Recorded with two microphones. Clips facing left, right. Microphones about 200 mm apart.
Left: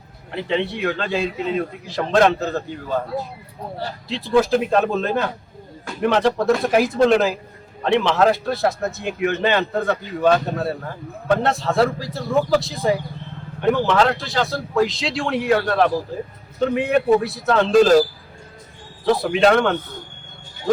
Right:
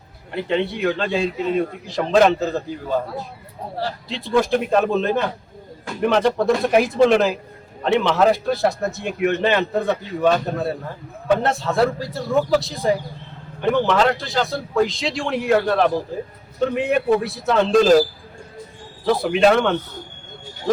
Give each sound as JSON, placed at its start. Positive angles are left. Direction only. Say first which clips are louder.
{"t": 0.3, "sound": "a man's voice", "louder": "right 1 dB", "side_deg": 0}
{"t": 4.1, "sound": "a man's voice", "louder": "left 2 dB", "side_deg": 0}
{"t": 19.0, "sound": "a man's voice", "louder": "even", "side_deg": 0}